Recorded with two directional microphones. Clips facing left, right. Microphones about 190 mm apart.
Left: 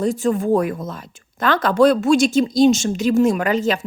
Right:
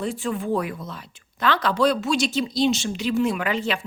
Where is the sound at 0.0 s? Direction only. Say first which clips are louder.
Left 8 dB; 40° left (ahead or behind).